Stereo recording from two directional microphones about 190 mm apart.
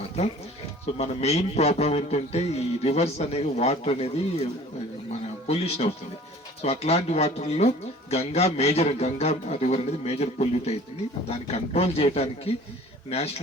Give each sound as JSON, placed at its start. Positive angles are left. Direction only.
{"t": 0.9, "sound": "a man's voice", "side_deg": 35}
{"t": 5.5, "sound": "a man's voice", "side_deg": 35}